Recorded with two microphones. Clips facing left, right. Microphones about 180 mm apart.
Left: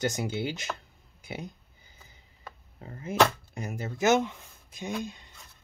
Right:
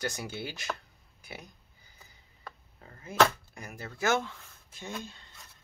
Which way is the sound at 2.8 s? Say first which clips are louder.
Left 1 dB; 25° left (ahead or behind).